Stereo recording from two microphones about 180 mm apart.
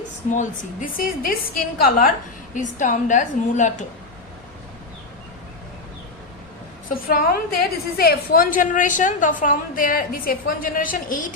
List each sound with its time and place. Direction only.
0.3 s a woman's voice: 45° left (ahead or behind)
2.6 s a woman's voice: 45° left (ahead or behind)
6.9 s a woman's voice: 55° left (ahead or behind)